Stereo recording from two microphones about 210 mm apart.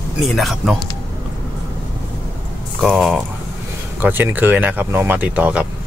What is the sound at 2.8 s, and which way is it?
Speech, centre (ahead or behind).